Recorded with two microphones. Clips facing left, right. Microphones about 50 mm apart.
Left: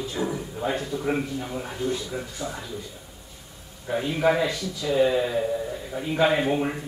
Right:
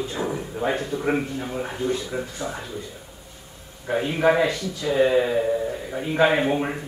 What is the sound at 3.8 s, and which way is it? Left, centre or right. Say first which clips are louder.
A man's voice: right 2 dB; right.